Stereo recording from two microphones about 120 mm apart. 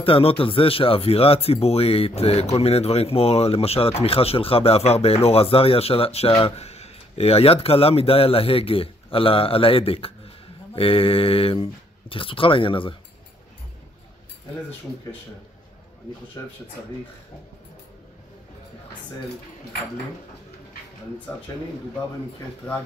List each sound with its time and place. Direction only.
0.0 s speech: 50° left (ahead or behind)
16.4 s speech: 25° left (ahead or behind)